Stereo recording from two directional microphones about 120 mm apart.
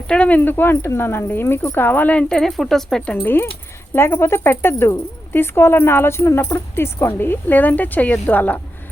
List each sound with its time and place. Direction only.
0.1 s speech: 10° left (ahead or behind)
3.2 s speech: 20° left (ahead or behind)